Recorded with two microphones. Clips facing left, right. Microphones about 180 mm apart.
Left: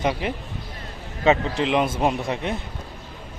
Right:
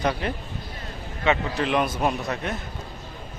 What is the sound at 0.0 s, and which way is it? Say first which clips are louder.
Speech: left 1 dB; 15° left (ahead or behind).